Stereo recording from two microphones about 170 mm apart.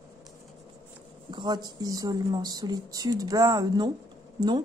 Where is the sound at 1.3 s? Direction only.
25° right (ahead or behind).